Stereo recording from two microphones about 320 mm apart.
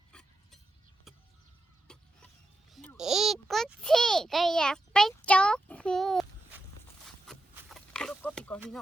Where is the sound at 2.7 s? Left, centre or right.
Centre.